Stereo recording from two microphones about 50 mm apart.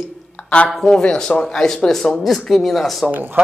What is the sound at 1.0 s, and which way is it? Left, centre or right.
Speech, centre.